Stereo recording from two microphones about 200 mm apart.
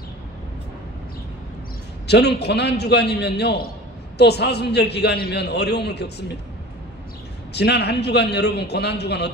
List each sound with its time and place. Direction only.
2.0 s a man's voice: 55° left (ahead or behind)
7.5 s a man's voice: 55° left (ahead or behind)